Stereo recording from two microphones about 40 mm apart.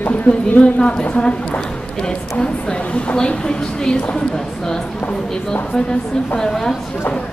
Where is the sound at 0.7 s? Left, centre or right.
Left.